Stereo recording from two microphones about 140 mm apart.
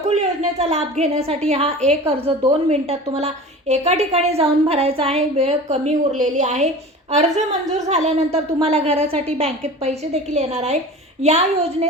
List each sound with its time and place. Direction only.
0.1 s a woman's voice: 55° right (ahead or behind)